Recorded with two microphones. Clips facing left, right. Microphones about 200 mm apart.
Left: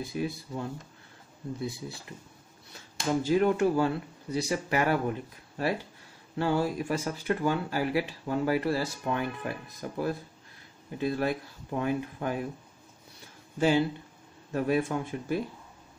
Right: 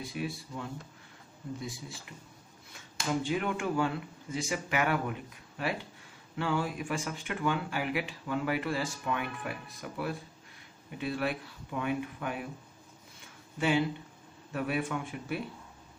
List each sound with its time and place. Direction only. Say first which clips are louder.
0.2 s speech: left 4 dB; 35° left (ahead or behind)
1.6 s speech: left 6 dB; 35° left (ahead or behind)
13.6 s speech: left 4 dB; 35° left (ahead or behind)